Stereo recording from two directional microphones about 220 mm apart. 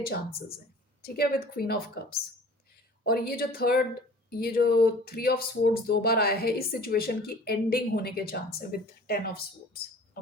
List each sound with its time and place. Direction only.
1.0 s speech: 45° left (ahead or behind)